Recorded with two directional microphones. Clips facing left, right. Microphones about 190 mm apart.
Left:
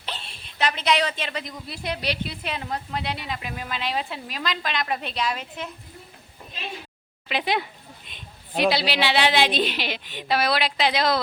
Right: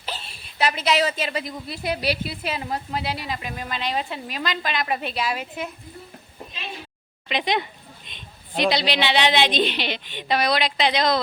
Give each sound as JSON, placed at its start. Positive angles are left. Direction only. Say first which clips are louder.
{"t": 0.0, "sound": "a woman's voice", "louder": "right 2 dB", "side_deg": -5}
{"t": 7.3, "sound": "speech", "louder": "right 1 dB", "side_deg": 5}